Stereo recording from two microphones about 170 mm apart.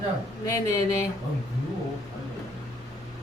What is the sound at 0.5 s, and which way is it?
Speech, 20° left (ahead or behind).